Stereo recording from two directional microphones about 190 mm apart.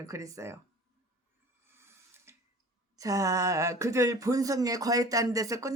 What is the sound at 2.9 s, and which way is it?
Speech, 15° right (ahead or behind).